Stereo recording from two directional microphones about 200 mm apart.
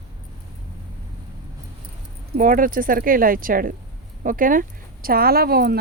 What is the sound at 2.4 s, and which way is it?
A woman's voice, 45° right (ahead or behind).